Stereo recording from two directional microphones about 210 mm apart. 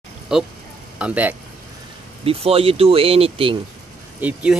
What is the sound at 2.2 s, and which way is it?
Speech, 25° right (ahead or behind).